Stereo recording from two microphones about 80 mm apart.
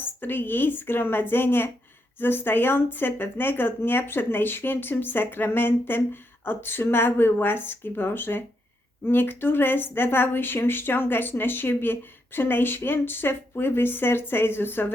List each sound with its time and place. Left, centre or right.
0.0 s speech: left